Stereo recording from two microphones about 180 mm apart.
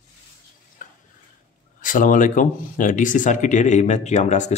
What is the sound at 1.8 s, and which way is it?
Speech, 45° left (ahead or behind).